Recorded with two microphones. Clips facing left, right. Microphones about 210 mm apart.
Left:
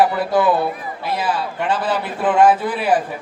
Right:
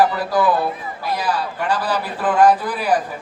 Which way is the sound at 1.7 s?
25° left (ahead or behind).